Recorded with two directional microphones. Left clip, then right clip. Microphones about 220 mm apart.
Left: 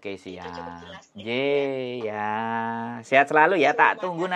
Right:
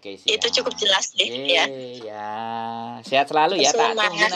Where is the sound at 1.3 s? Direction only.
45° left (ahead or behind).